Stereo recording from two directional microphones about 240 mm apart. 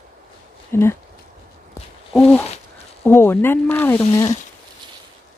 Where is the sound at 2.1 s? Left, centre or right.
Centre.